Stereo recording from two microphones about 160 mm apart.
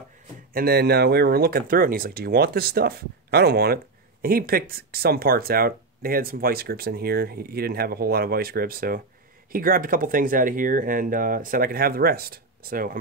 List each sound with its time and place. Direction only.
0.5 s speech: 70° right (ahead or behind)